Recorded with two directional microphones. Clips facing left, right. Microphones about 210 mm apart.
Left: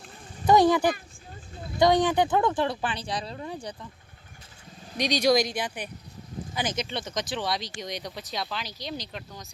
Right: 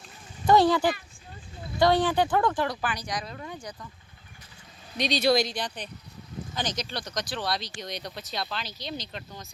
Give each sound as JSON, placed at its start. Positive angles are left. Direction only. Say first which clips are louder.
{"t": 0.4, "sound": "speech", "louder": "left 1 dB", "side_deg": 15}
{"t": 4.9, "sound": "speech", "louder": "left 1 dB", "side_deg": 10}
{"t": 6.8, "sound": "speech", "louder": "left 2 dB", "side_deg": 25}